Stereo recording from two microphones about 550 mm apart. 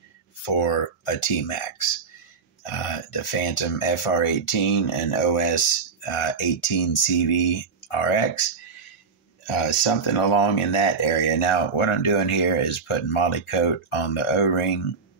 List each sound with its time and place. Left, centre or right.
0.5 s speech: left
10.0 s speech: left